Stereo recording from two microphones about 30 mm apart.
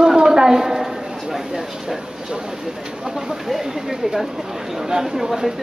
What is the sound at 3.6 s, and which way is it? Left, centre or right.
Speech, centre.